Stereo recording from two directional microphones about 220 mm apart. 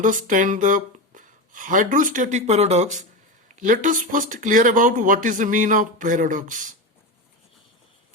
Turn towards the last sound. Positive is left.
turn(degrees=-35)  # may be behind; listen again after turning